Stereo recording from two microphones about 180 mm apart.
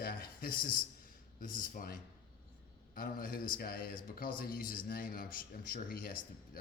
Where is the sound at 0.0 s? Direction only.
55° left (ahead or behind).